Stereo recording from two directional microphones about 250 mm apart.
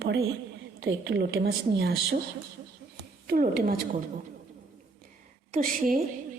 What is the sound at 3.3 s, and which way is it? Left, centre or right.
Speech, right.